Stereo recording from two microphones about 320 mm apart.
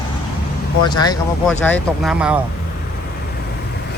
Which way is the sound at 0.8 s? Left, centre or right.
Centre.